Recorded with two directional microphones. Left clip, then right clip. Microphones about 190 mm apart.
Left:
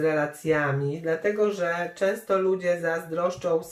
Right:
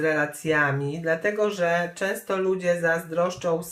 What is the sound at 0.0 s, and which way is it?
Speech, 35° right (ahead or behind).